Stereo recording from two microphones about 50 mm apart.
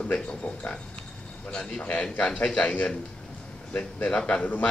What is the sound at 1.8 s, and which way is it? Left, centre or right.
Speech, left.